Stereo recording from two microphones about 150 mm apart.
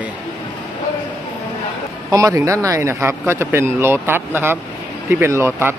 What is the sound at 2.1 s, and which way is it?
Speech, 20° right (ahead or behind).